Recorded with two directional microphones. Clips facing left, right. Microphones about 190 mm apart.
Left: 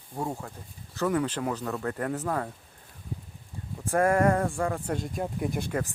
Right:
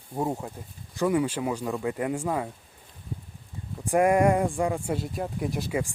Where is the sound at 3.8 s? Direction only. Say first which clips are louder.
Right 2 dB; 15° right (ahead or behind).